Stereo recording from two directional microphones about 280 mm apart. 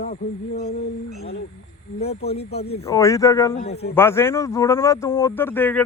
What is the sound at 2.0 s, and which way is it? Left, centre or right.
Speech, left.